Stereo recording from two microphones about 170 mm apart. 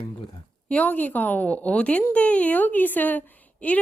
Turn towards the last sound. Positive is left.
turn(degrees=10)  # may be behind; listen again after turning